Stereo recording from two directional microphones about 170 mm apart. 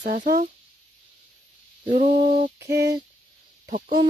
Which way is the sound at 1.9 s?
50° right (ahead or behind).